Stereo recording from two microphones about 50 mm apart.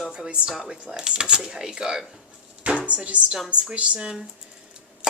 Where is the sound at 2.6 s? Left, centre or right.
Right.